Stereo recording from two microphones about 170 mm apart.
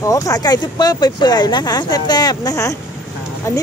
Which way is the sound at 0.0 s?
20° left (ahead or behind).